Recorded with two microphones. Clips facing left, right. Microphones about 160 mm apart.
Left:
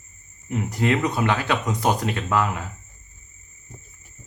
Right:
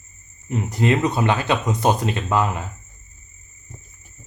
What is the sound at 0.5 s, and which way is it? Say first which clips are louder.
Speech: right 2 dB; 20° right (ahead or behind).